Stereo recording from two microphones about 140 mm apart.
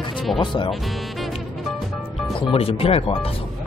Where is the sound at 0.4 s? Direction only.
35° left (ahead or behind).